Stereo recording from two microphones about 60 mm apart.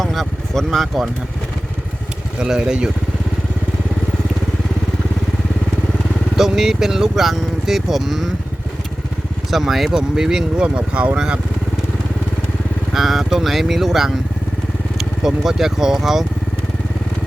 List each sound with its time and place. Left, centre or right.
0.0 s vehicle: centre
2.4 s speech: centre
6.3 s speech: centre
9.5 s speech: centre
10.8 s speech: right
12.9 s speech: centre